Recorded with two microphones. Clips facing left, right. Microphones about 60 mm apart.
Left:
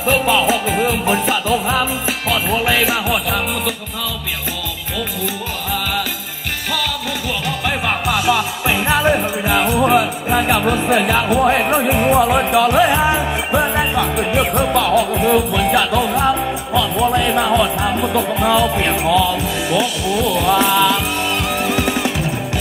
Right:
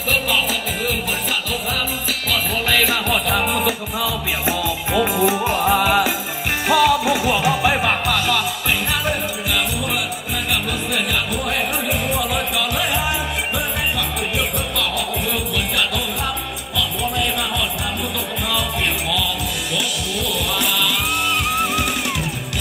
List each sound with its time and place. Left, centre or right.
0.1 s music: left
3.1 s music: centre
4.9 s music: centre
8.1 s music: centre
20.2 s music: centre
20.5 s music: left